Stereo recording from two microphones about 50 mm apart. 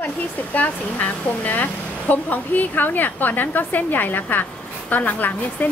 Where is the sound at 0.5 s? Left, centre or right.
Left.